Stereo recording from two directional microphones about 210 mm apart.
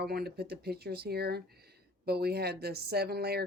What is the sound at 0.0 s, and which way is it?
Speech, 50° right (ahead or behind).